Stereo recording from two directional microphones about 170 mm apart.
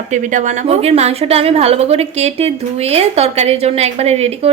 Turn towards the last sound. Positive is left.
turn(degrees=-40)  # may be behind; listen again after turning